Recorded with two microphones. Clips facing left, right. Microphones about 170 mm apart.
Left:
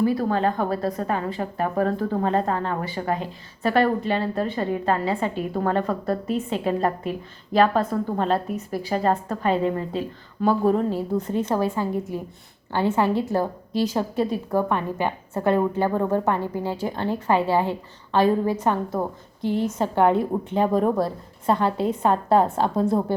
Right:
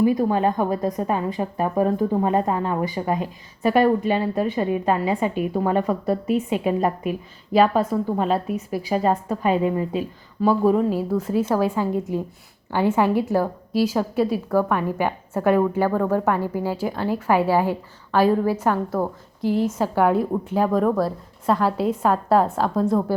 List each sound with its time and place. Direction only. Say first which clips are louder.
0.0 s a woman's voice: right 2 dB; 15° right (ahead or behind)
15.9 s a woman's voice: right 2 dB; 20° left (ahead or behind)
16.1 s a woman's voice: right 1 dB; 10° right (ahead or behind)